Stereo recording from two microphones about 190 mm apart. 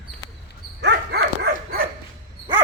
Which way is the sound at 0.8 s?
60° right (ahead or behind).